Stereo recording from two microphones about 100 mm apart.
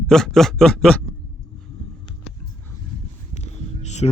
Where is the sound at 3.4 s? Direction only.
90° left.